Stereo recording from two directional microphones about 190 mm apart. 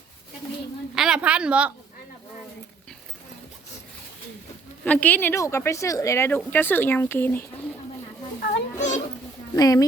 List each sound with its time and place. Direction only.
0.9 s a woman's voice: 5° right (ahead or behind)
4.9 s speech: 10° left (ahead or behind)
8.4 s children playing: 40° left (ahead or behind)
9.6 s speech: 20° left (ahead or behind)